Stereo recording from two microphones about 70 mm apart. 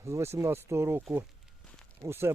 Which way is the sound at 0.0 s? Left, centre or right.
Right.